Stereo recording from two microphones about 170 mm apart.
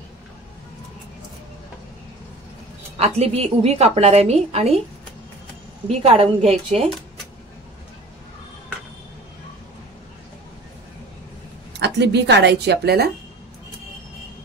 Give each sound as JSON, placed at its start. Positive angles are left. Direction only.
{"t": 3.2, "sound": "speech", "side_deg": -35}
{"t": 5.9, "sound": "speech", "side_deg": -35}
{"t": 11.7, "sound": "speech", "side_deg": -85}